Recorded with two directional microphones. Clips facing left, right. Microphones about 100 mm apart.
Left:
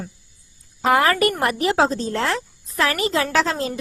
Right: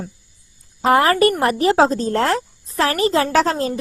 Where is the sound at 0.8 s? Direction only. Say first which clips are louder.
Right 3 dB; 35° right (ahead or behind).